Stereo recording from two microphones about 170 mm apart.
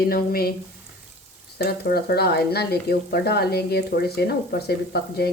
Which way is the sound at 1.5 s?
65° left (ahead or behind).